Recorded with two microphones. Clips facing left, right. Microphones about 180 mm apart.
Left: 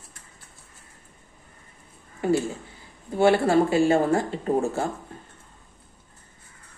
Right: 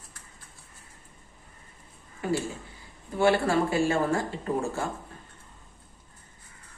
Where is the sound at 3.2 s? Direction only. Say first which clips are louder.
Left 4 dB; 25° left (ahead or behind).